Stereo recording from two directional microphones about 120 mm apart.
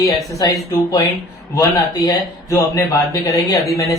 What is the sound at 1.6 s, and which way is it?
Speech, 30° left (ahead or behind).